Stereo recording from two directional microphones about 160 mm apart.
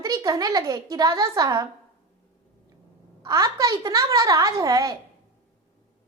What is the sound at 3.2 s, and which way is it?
A woman's voice, 20° right (ahead or behind).